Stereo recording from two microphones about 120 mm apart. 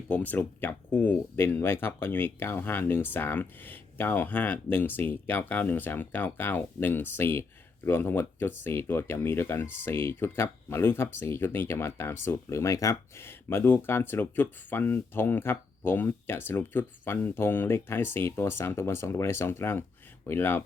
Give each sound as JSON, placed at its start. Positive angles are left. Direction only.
{"t": 0.1, "sound": "speech", "side_deg": 15}